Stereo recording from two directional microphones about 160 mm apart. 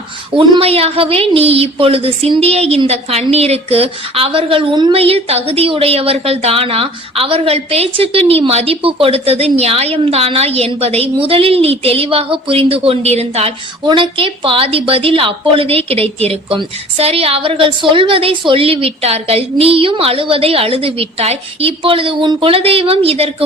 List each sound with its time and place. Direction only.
0.3 s a woman's voice: 35° right (ahead or behind)